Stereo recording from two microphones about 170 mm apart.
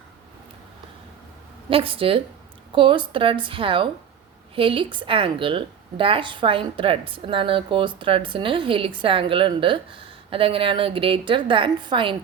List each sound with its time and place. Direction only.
1.7 s a woman's voice: 30° right (ahead or behind)